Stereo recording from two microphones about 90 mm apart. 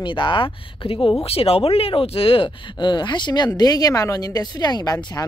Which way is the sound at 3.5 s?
45° left (ahead or behind).